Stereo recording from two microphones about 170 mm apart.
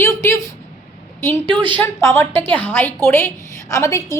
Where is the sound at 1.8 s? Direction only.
15° left (ahead or behind).